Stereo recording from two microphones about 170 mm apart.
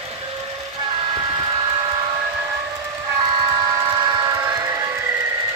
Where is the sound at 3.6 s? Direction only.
25° right (ahead or behind).